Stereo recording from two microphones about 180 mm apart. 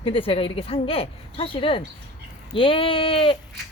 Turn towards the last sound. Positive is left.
turn(degrees=30)  # may be behind; listen again after turning